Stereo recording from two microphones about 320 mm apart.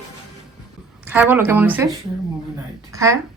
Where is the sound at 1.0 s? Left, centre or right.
Centre.